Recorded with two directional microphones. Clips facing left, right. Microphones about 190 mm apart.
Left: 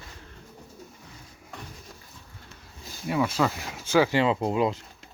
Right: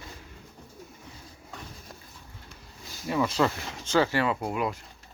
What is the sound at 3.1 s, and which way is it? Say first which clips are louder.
Speech: even; 10° left (ahead or behind).